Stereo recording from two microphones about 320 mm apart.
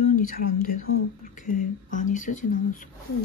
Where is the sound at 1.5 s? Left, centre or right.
Left.